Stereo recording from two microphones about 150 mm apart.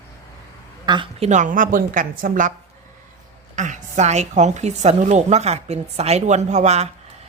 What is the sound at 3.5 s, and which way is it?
A woman's voice, 55° right (ahead or behind).